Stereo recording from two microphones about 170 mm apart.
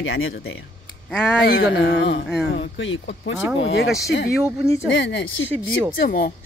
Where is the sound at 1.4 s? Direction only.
85° left.